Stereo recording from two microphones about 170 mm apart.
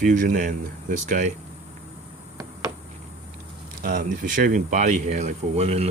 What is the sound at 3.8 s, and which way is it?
Speech, 50° right (ahead or behind).